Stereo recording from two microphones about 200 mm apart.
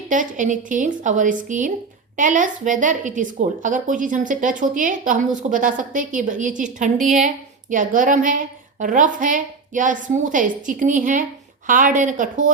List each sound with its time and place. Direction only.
0.1 s a woman's voice: 40° right (ahead or behind)